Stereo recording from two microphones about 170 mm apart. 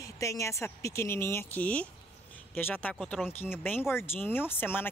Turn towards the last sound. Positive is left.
turn(degrees=10)  # may be behind; listen again after turning